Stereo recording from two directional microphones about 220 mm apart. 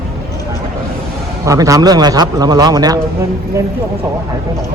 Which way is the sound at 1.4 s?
15° right (ahead or behind).